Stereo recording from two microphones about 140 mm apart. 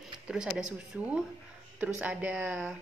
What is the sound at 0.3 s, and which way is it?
A woman's voice, 5° right (ahead or behind).